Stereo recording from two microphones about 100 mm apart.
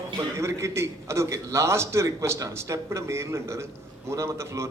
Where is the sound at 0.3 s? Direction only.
30° right (ahead or behind).